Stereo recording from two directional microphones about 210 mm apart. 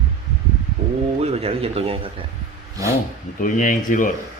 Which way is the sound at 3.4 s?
40° left (ahead or behind).